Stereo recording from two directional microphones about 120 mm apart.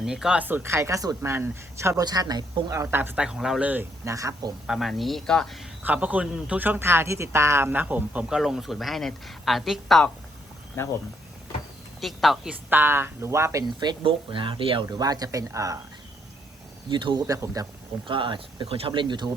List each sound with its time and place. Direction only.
0.0 s speech: 5° right (ahead or behind); by 2.0 s 25° right (ahead or behind)
2.0 s speech: 35° right (ahead or behind); by 3.7 s 5° right (ahead or behind)
3.7 s speech: 15° right (ahead or behind)
4.1 s speech: 25° right (ahead or behind)
4.6 s speech: 5° right (ahead or behind)
5.8 s speech: 15° right (ahead or behind)
8.4 s speech: centre (ahead or behind)
11.9 s speech: centre (ahead or behind)
12.7 s speech: 20° right (ahead or behind)
13.7 s speech: 40° right (ahead or behind)
14.8 s speech: 30° right (ahead or behind)
16.9 s speech: 40° right (ahead or behind)
17.2 s speech: 30° right (ahead or behind)
18.1 s speech: 45° right (ahead or behind)